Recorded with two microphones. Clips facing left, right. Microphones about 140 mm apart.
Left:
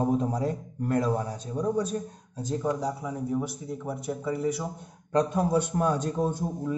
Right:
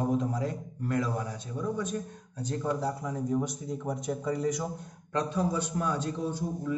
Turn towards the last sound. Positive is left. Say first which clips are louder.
# left 4 dB
turn(degrees=50)  # may be behind; listen again after turning